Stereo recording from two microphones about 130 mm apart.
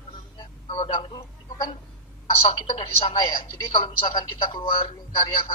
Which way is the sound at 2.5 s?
45° left (ahead or behind).